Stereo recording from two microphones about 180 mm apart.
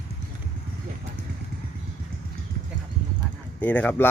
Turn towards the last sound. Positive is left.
turn(degrees=10)  # may be behind; listen again after turning